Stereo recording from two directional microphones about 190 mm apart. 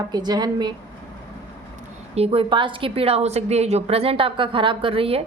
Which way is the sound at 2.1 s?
30° right (ahead or behind).